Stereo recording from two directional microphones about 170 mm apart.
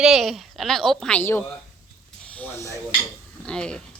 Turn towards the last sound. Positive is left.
turn(degrees=5)  # may be behind; listen again after turning